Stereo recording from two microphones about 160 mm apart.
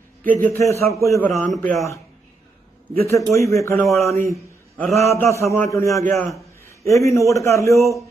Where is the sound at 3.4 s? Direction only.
20° left (ahead or behind).